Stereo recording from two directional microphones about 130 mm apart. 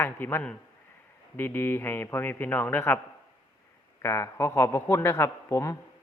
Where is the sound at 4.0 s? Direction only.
20° left (ahead or behind).